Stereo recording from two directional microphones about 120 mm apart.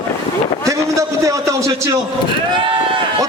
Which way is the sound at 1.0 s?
25° right (ahead or behind).